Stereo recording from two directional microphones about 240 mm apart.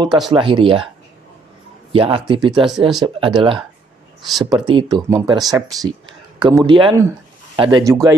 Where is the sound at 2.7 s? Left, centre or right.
Centre.